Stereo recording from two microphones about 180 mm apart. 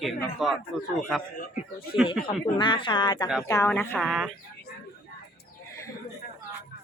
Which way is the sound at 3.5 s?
15° left (ahead or behind).